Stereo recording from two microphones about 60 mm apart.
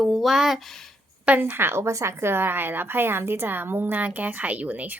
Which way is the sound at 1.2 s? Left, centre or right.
Right.